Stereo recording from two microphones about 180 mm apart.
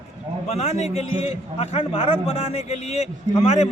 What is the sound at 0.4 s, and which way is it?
A man's voice, 35° left (ahead or behind).